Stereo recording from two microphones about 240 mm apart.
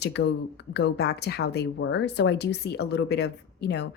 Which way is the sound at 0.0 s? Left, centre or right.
Left.